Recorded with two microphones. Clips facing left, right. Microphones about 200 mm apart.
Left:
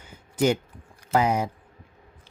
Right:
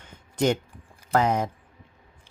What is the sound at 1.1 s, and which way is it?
Speech, 10° left (ahead or behind).